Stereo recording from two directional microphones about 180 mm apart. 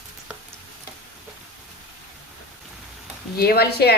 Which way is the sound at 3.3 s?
60° left (ahead or behind).